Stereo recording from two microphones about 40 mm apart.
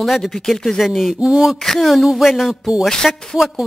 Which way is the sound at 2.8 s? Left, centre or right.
Centre.